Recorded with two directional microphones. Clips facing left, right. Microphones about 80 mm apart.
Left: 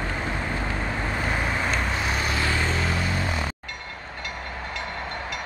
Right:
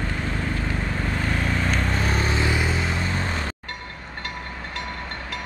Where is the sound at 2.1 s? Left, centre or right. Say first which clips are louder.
Right 2 dB; right.